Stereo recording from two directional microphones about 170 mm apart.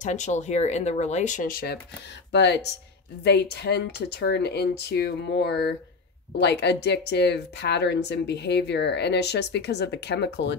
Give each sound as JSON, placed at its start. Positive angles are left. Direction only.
{"t": 0.0, "sound": "speech", "side_deg": 45}
{"t": 2.3, "sound": "speech", "side_deg": 90}
{"t": 3.3, "sound": "speech", "side_deg": 80}
{"t": 6.4, "sound": "speech", "side_deg": 90}